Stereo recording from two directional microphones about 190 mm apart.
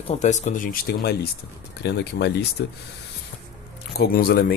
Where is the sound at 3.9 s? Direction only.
55° left (ahead or behind).